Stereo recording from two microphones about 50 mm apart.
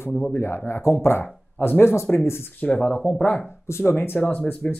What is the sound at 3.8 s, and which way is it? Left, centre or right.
Speech, left.